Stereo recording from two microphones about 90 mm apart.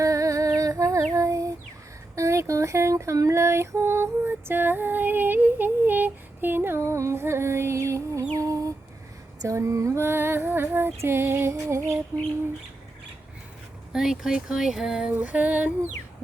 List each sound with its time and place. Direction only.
0.0 s a sound: 40° right (ahead or behind)
1.1 s child singing: 35° right (ahead or behind)
2.1 s female singing: 35° right (ahead or behind)
8.4 s a sound: 40° right (ahead or behind)
9.4 s female singing: 35° right (ahead or behind)
13.9 s speech: 5° right (ahead or behind)